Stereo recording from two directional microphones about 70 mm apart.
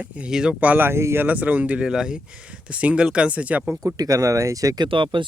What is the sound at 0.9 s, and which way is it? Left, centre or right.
Speech, right.